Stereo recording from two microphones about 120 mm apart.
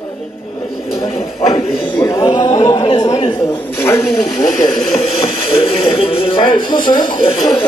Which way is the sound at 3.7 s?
20° left (ahead or behind).